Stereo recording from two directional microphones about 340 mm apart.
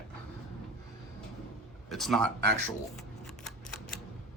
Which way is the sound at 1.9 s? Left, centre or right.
Centre.